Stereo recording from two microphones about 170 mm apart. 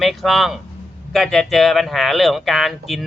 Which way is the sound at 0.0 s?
Centre (ahead or behind).